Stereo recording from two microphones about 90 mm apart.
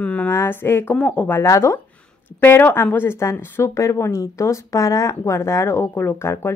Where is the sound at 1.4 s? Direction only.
35° left (ahead or behind).